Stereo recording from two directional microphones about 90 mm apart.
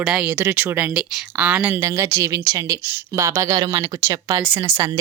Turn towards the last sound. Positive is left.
turn(degrees=-25)  # may be behind; listen again after turning